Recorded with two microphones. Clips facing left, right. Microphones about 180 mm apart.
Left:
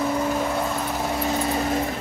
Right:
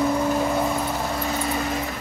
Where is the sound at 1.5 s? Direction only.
30° left (ahead or behind).